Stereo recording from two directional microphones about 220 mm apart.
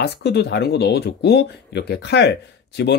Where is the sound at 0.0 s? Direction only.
50° left (ahead or behind).